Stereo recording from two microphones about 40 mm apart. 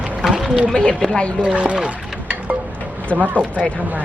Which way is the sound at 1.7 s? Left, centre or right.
Right.